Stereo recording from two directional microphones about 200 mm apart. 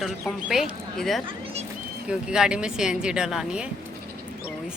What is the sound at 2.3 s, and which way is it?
Speech, 5° right (ahead or behind).